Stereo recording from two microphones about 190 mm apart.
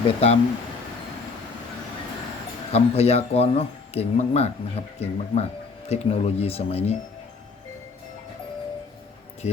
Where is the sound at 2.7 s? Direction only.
35° left (ahead or behind).